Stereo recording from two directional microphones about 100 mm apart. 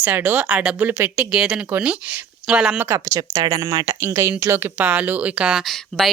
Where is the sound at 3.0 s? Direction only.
35° right (ahead or behind); by 5.6 s 10° right (ahead or behind).